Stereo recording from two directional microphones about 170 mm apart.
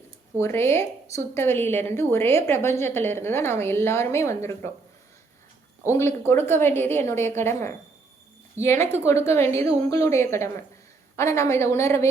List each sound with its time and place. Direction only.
0.3 s a woman's voice: 15° left (ahead or behind)
5.8 s a woman's voice: 15° left (ahead or behind)